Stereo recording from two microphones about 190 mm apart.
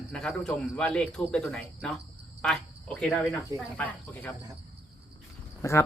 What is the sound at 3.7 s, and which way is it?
Speech, 10° left (ahead or behind).